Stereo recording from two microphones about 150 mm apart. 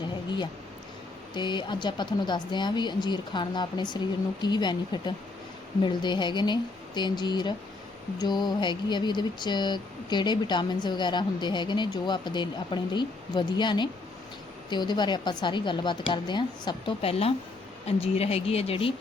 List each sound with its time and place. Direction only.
1.3 s a woman's voice: 30° left (ahead or behind)